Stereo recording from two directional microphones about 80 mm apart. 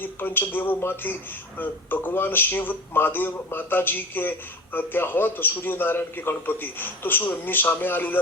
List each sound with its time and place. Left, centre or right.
0.0 s speech: left